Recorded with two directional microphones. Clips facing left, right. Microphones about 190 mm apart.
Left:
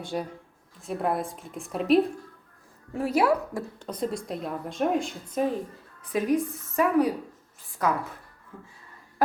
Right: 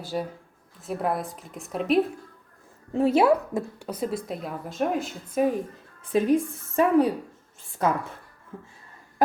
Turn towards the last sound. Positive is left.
turn(degrees=-25)  # may be behind; listen again after turning